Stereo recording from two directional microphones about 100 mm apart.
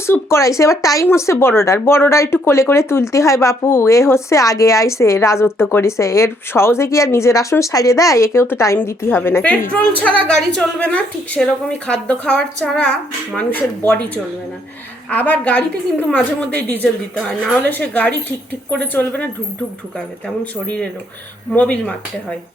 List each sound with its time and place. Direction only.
0.0 s a woman's voice: 25° left (ahead or behind); by 12.9 s 5° left (ahead or behind)
13.3 s speech: 20° left (ahead or behind)
15.1 s a woman's voice: 15° left (ahead or behind)